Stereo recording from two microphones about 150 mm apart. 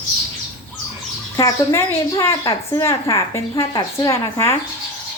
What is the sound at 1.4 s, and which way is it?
A woman's voice, 20° left (ahead or behind).